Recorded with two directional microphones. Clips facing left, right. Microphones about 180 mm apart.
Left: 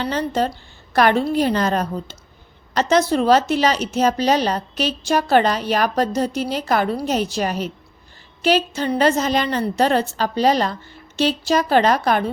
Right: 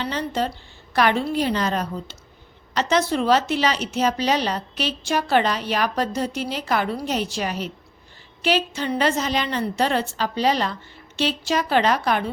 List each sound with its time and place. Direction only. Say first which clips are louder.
0.0 s a woman's voice: left 4 dB; 45° left (ahead or behind)